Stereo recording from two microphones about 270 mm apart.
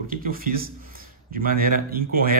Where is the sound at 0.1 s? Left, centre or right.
Right.